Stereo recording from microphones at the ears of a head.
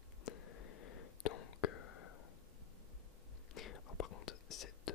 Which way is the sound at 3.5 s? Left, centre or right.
Left.